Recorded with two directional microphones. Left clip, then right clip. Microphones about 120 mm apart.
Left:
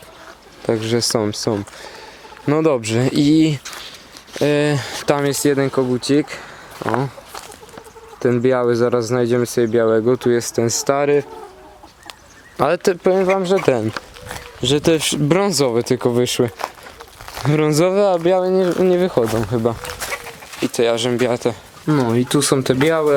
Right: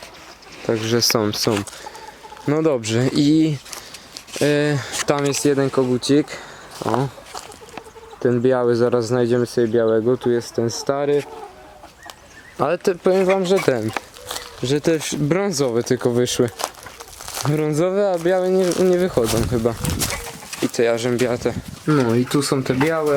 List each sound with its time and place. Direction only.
0.7 s speech: 5° left (ahead or behind)
2.5 s speech: 10° left (ahead or behind)
4.4 s speech: 5° left (ahead or behind)
9.6 s speech: 25° left (ahead or behind)
11.0 s speech: 40° left (ahead or behind)
12.5 s speech: 20° left (ahead or behind)
13.0 s speech: 5° left (ahead or behind)
13.8 s a sound: 5° right (ahead or behind)
14.6 s speech: 15° left (ahead or behind)
17.2 s a sound: centre (ahead or behind)
17.5 s speech: 30° left (ahead or behind)
17.8 s speech: 15° left (ahead or behind)